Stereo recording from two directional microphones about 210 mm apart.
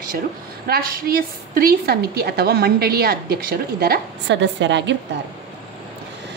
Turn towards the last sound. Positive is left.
turn(degrees=-55)  # may be behind; listen again after turning